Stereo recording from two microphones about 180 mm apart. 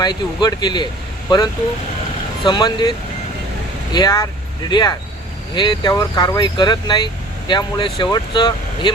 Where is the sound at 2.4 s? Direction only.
25° left (ahead or behind).